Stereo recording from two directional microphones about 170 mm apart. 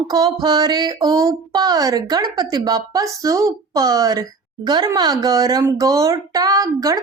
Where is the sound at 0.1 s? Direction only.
25° right (ahead or behind).